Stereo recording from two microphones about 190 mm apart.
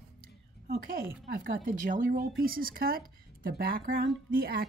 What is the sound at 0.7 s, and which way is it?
Speech, 50° right (ahead or behind).